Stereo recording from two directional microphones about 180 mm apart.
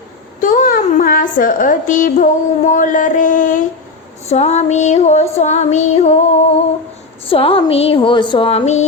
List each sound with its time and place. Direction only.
0.4 s a woman's voice: 50° left (ahead or behind)
4.3 s music: 40° left (ahead or behind)
7.3 s music: 30° left (ahead or behind)